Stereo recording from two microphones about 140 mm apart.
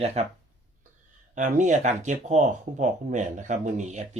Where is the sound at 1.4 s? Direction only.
65° right (ahead or behind).